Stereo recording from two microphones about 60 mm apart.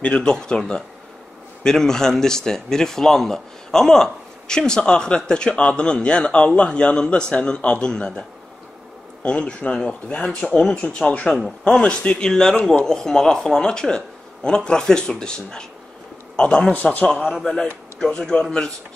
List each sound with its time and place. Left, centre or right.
0.0 s speech: centre
17.4 s speech: centre